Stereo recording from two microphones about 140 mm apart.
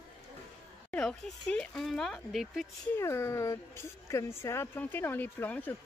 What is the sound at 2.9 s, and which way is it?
Speech, 20° left (ahead or behind).